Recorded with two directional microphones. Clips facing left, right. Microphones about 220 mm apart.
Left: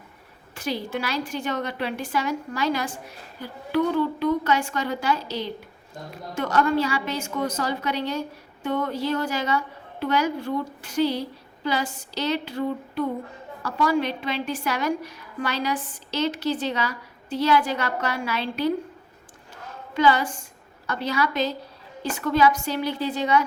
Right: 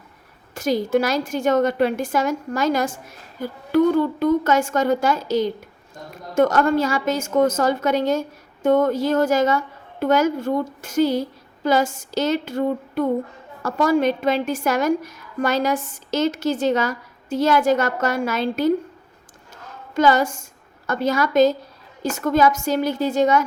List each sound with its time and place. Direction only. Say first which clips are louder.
0.5 s a woman's voice: right 9 dB; 45° right (ahead or behind)
19.9 s a woman's voice: right 4 dB; 45° right (ahead or behind)